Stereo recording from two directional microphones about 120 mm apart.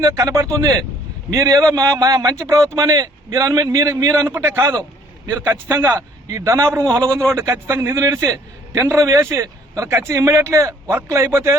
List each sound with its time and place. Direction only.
0.0 s speech: 25° right (ahead or behind)
4.7 s a sound: 30° right (ahead or behind)
5.3 s speech: 15° right (ahead or behind)
7.1 s speech: 10° left (ahead or behind)
7.3 s a man's voice: 20° right (ahead or behind)